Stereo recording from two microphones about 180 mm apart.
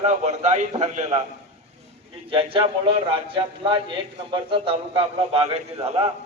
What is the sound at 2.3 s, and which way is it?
A man's voice, 30° right (ahead or behind).